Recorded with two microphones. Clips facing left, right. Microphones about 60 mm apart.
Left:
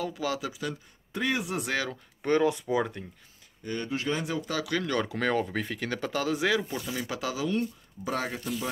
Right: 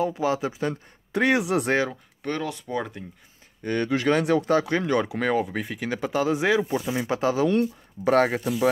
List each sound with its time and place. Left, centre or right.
0.0 s speech: right
1.1 s speech: right
2.2 s speech: centre
2.7 s speech: centre
3.6 s speech: right
4.5 s speech: right